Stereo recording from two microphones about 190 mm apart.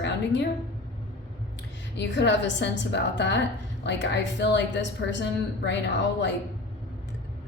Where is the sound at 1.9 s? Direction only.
65° left (ahead or behind).